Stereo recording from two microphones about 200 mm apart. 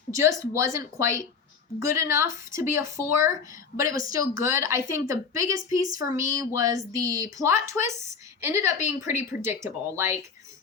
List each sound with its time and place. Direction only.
0.1 s a woman's voice: 15° right (ahead or behind)